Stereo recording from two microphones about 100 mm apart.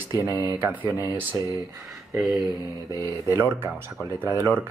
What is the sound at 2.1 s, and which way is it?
Mantra, centre (ahead or behind).